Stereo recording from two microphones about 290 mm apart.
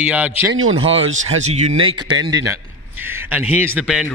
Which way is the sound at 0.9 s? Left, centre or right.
Right.